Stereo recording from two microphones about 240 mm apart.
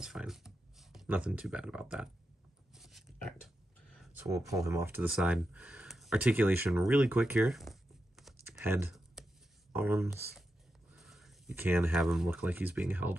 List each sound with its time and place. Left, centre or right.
0.0 s speech: centre
2.7 s a sound: centre
4.0 s speech: centre
8.2 s computer keyboard: centre
9.7 s speech: centre